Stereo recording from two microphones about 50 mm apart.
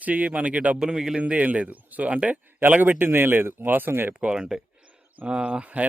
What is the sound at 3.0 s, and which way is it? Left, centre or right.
Speech, right.